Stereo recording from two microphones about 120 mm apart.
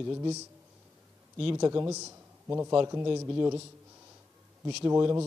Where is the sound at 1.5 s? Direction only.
30° right (ahead or behind).